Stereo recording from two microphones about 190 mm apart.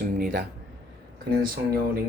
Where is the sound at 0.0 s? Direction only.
45° right (ahead or behind).